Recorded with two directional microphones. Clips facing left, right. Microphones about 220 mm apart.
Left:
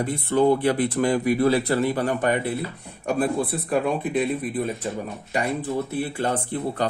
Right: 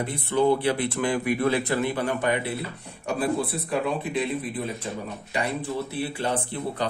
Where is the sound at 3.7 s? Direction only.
55° left (ahead or behind).